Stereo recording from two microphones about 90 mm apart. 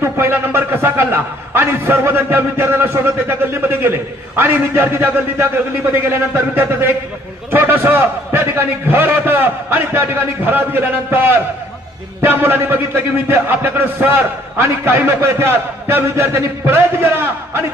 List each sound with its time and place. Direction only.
0.0 s a man's voice: 25° right (ahead or behind)
7.5 s a sound: 25° right (ahead or behind)
12.3 s a man's voice: 25° right (ahead or behind)